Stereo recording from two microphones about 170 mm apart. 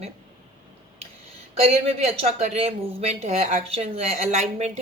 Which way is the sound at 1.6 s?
40° right (ahead or behind).